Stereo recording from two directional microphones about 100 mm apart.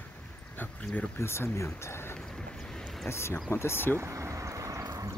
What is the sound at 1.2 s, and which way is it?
Speech, 25° left (ahead or behind).